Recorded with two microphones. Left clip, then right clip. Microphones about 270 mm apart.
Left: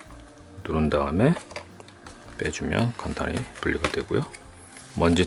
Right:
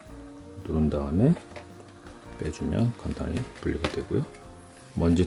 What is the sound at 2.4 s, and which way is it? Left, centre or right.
Speech, centre.